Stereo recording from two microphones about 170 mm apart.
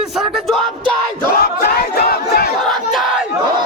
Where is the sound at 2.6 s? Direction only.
Centre (ahead or behind).